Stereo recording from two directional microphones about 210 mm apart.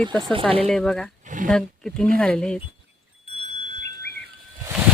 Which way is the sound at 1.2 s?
35° right (ahead or behind).